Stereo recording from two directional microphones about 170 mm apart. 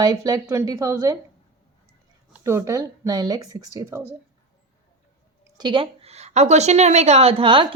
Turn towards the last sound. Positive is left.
turn(degrees=-30)  # may be behind; listen again after turning